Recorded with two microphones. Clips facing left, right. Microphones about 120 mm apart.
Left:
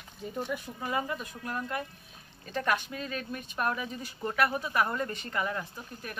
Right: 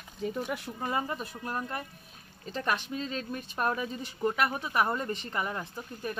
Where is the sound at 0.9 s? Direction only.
30° right (ahead or behind).